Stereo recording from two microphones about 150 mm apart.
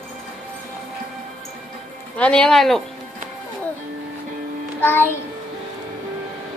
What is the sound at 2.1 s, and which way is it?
Speech, 5° left (ahead or behind).